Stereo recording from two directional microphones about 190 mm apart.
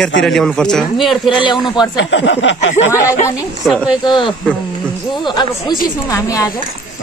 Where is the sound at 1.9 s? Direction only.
70° left (ahead or behind).